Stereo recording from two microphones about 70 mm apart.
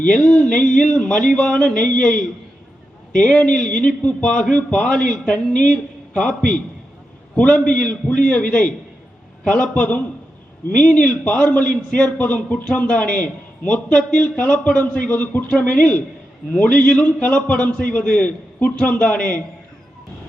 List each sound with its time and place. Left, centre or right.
0.1 s a man's voice: centre
3.2 s a man's voice: centre